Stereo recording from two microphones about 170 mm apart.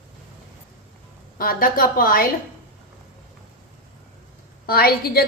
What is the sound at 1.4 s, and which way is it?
Speech, 60° left (ahead or behind).